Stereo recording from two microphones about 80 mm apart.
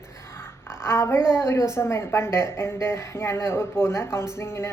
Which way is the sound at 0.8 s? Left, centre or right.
Left.